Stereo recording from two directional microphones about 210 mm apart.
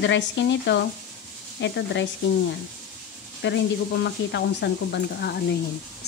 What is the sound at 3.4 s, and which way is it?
Speech, 55° left (ahead or behind).